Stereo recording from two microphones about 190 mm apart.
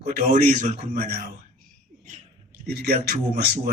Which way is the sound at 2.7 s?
55° right (ahead or behind).